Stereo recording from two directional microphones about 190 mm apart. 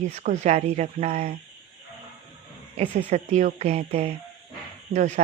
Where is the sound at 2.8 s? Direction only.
35° right (ahead or behind).